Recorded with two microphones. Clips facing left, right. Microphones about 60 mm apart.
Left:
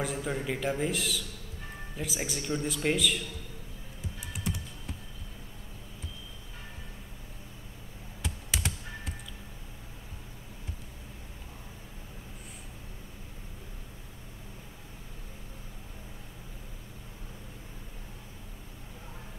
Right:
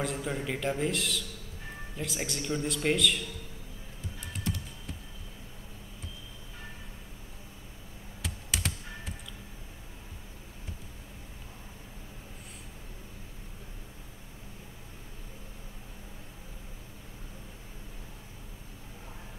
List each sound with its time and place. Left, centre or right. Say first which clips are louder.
0.0 s a man's voice: even; centre
8.2 s computer keyboard: left 1 dB; centre